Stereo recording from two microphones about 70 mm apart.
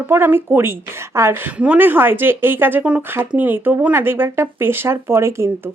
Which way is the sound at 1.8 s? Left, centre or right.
Right.